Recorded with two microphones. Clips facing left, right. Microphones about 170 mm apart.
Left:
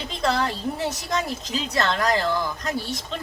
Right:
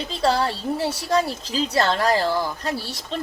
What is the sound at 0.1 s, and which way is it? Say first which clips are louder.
A woman's voice: right 3 dB; 35° right (ahead or behind).